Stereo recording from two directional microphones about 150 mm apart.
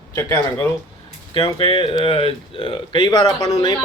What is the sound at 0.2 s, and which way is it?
Speech, 20° left (ahead or behind).